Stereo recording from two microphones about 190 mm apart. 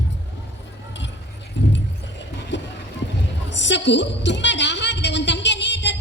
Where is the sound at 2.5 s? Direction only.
70° left (ahead or behind).